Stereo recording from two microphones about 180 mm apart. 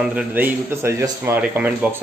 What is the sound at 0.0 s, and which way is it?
Speech, 10° right (ahead or behind).